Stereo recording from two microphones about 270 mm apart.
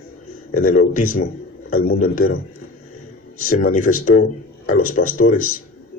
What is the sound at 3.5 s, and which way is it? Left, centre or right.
Speech, left.